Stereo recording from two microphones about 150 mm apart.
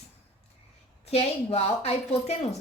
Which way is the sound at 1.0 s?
45° left (ahead or behind).